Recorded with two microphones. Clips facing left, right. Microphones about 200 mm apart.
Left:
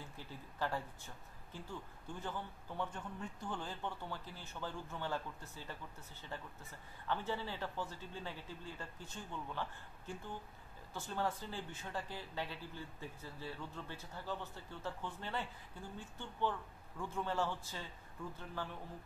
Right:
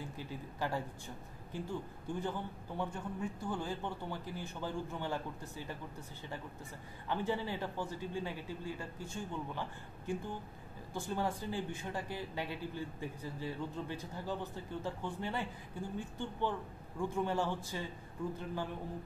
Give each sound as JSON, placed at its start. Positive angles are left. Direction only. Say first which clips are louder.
{"t": 0.2, "sound": "speech", "louder": "right 2 dB", "side_deg": -15}
{"t": 7.1, "sound": "speech", "louder": "right 4 dB", "side_deg": -15}